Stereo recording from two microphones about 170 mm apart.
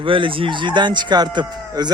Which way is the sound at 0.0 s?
30° right (ahead or behind).